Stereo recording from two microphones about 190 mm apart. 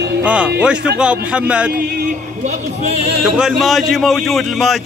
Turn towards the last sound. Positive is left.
turn(degrees=0)  # may be behind; listen again after turning